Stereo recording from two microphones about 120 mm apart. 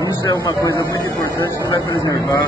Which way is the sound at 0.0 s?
30° left (ahead or behind).